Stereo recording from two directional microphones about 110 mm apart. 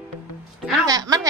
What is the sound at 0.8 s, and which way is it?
Speech, 35° right (ahead or behind).